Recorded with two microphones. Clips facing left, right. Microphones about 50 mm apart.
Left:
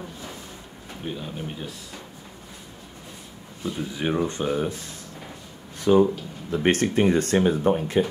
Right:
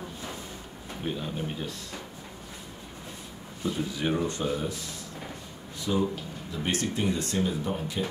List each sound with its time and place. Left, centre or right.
1.0 s speech: centre
3.9 s speech: centre
4.4 s speech: left
5.8 s a sound: left
6.5 s speech: left